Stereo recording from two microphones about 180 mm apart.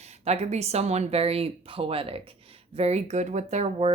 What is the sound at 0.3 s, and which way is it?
A woman's voice, 35° right (ahead or behind).